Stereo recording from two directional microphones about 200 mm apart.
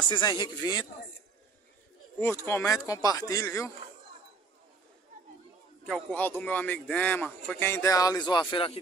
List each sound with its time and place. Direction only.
0.1 s speech: 20° left (ahead or behind)
2.1 s speech: 10° left (ahead or behind)
5.9 s speech: 5° left (ahead or behind); by 8.7 s 25° left (ahead or behind)